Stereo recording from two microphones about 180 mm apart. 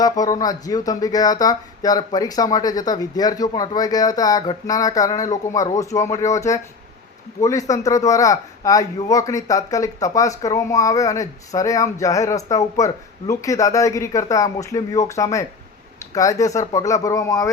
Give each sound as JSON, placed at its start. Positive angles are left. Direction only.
{"t": 0.0, "sound": "speech", "side_deg": 20}